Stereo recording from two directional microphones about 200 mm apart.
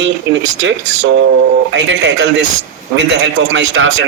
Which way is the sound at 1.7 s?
60° right (ahead or behind).